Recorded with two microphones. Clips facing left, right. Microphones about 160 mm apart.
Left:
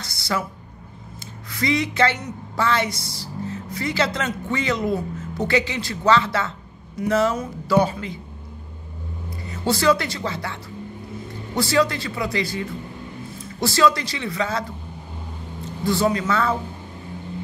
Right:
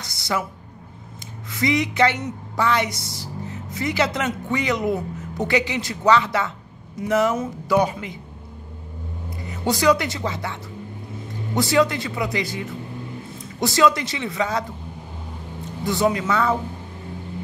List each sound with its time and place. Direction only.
0.0 s a sound: 20° right (ahead or behind)
1.5 s a woman's voice: 20° right (ahead or behind)
9.5 s a woman's voice: 20° right (ahead or behind)
15.8 s speech: 20° right (ahead or behind)